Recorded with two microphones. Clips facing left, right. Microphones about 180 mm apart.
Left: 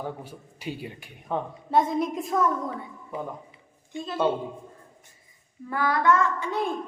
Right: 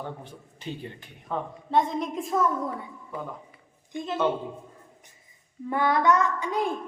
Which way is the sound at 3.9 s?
20° right (ahead or behind).